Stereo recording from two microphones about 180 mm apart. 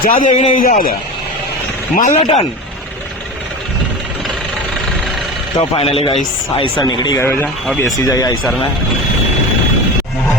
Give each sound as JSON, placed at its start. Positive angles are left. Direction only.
{"t": 0.1, "sound": "a man's voice", "side_deg": 45}
{"t": 2.0, "sound": "a man's voice", "side_deg": 45}
{"t": 5.5, "sound": "speech", "side_deg": 30}